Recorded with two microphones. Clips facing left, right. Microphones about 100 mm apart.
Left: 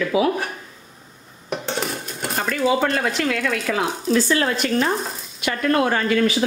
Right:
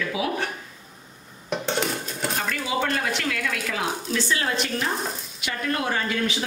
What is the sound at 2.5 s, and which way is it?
Speech, 40° left (ahead or behind).